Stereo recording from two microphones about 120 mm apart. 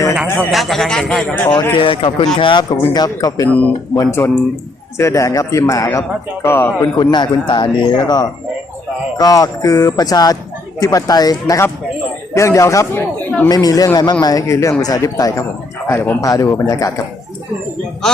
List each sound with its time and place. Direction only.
0.3 s a man's voice: centre (ahead or behind)
1.8 s speech: 45° left (ahead or behind); by 6.9 s 20° left (ahead or behind)
7.0 s speech: 40° left (ahead or behind); by 13.1 s 20° left (ahead or behind)
13.5 s speech: 30° left (ahead or behind)